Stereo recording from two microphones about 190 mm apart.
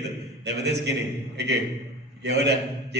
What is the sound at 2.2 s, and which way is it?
Speech, 60° right (ahead or behind).